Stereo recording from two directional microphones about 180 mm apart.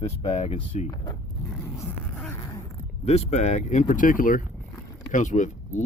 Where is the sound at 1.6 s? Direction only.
10° left (ahead or behind).